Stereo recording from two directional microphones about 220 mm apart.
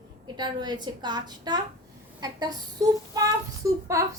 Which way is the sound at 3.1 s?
15° right (ahead or behind).